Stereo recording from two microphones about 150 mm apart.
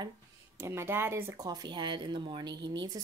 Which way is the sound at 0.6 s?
15° right (ahead or behind).